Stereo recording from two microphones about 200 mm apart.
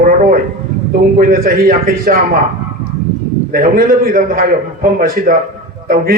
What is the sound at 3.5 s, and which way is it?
A man's voice, 45° right (ahead or behind).